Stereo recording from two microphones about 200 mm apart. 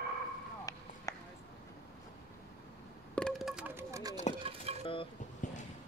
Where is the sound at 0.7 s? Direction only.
15° left (ahead or behind).